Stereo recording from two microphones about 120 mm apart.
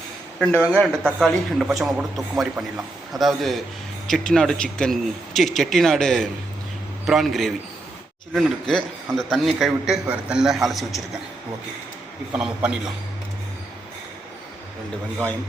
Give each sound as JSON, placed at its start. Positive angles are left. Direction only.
{"t": 0.8, "sound": "a man's voice", "side_deg": 5}
{"t": 1.6, "sound": "a man's voice", "side_deg": -5}
{"t": 12.3, "sound": "a man's voice", "side_deg": -10}